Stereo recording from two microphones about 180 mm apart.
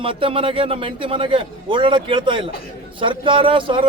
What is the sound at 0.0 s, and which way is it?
A man's voice, 30° right (ahead or behind).